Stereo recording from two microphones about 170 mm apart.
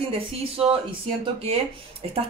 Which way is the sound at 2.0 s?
40° right (ahead or behind).